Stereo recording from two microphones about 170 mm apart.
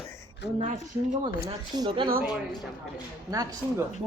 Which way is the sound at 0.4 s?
90° left.